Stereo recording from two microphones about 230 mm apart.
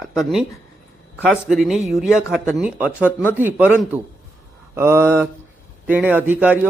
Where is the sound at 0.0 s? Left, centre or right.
Centre.